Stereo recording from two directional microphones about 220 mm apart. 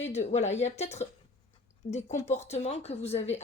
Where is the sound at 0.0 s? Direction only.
30° left (ahead or behind).